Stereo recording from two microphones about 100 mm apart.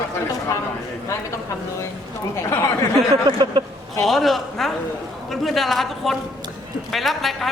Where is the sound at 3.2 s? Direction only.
45° right (ahead or behind).